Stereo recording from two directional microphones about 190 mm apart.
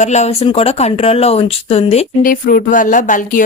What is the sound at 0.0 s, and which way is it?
Speech, 35° left (ahead or behind).